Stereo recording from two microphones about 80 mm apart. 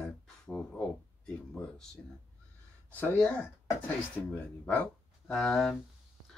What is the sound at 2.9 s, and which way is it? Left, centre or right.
Speech, left.